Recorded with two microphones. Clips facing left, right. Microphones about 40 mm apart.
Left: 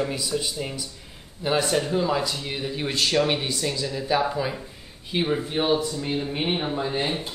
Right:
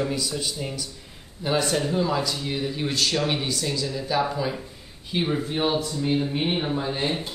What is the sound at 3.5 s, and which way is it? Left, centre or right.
Speech, centre.